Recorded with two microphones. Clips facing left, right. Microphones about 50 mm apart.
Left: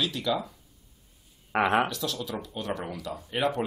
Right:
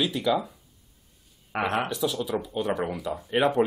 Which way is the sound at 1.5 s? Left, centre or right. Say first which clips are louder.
Left 3 dB; left.